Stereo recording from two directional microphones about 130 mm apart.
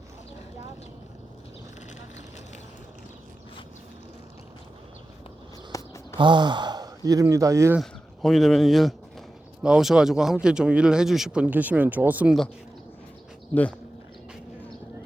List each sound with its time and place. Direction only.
5.7 s a sound: 25° left (ahead or behind)
6.1 s speech: 35° right (ahead or behind)
7.8 s speech: centre (ahead or behind)
13.5 s speech: 10° left (ahead or behind)